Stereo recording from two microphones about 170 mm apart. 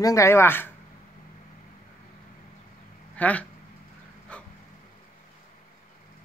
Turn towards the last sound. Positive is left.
turn(degrees=5)  # may be behind; listen again after turning